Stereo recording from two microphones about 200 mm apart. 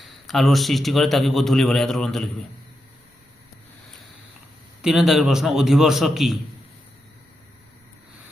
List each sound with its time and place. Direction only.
0.0 s a man's voice: centre (ahead or behind)
4.8 s a man's voice: centre (ahead or behind)